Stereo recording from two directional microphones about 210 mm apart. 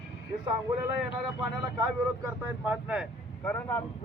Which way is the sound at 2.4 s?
5° right (ahead or behind).